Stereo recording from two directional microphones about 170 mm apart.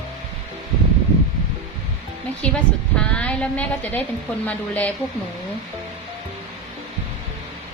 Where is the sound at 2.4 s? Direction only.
5° left (ahead or behind).